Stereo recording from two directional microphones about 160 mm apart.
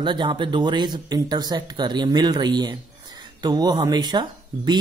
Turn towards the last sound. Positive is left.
turn(degrees=-25)  # may be behind; listen again after turning